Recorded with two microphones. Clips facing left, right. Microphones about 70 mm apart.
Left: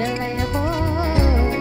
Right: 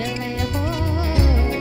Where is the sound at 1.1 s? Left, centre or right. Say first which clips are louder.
Left 1 dB; left.